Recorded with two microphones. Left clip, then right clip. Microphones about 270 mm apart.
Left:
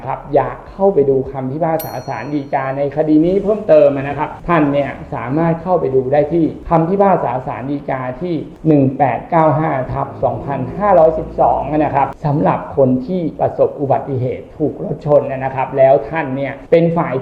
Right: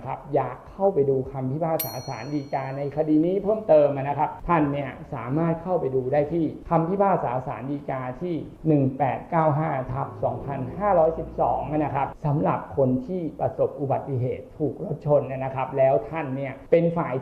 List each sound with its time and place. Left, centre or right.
0.1 s speech: left
16.9 s a woman's voice: centre